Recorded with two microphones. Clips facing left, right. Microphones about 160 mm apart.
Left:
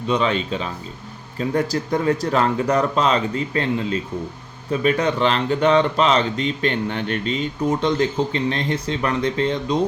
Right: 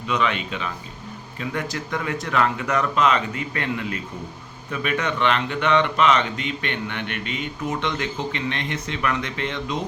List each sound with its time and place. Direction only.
0.1 s speech: 30° left (ahead or behind)